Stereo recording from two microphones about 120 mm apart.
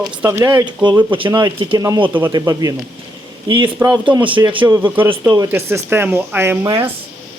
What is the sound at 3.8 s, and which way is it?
Speech, 30° right (ahead or behind).